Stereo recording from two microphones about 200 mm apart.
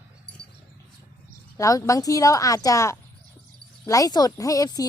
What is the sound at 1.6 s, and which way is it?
Speech, 15° left (ahead or behind).